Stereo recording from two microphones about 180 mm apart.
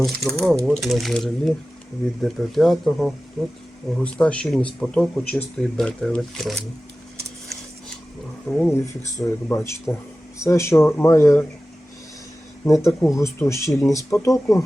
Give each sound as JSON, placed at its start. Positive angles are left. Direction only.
{"t": 0.0, "sound": "speech", "side_deg": 0}
{"t": 8.4, "sound": "speech", "side_deg": 0}
{"t": 8.7, "sound": "speech", "side_deg": 15}
{"t": 12.6, "sound": "speech", "side_deg": 15}